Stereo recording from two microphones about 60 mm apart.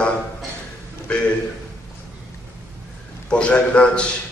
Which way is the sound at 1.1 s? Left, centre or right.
Centre.